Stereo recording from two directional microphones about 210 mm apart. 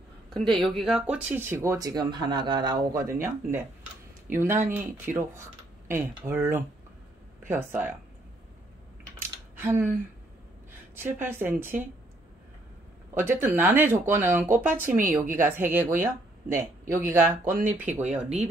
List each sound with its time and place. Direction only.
0.3 s speech: centre (ahead or behind)
4.3 s speech: 10° right (ahead or behind)
9.2 s a sound: 10° right (ahead or behind)
11.0 s speech: 10° right (ahead or behind)
13.1 s speech: 10° right (ahead or behind)
14.5 s speech: 40° right (ahead or behind)
15.1 s speech: 10° right (ahead or behind)